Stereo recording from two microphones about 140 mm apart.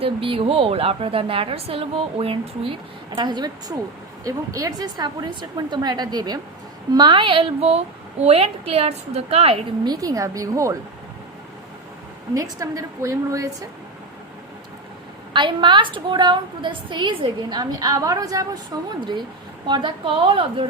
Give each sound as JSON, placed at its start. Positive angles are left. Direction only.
{"t": 0.0, "sound": "a woman's voice", "side_deg": -40}
{"t": 9.8, "sound": "a woman's voice", "side_deg": -25}
{"t": 12.3, "sound": "a woman's voice", "side_deg": -25}
{"t": 15.3, "sound": "a woman's voice", "side_deg": -35}